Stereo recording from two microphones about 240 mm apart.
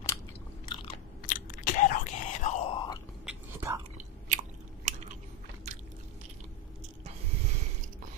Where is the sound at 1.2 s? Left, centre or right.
Left.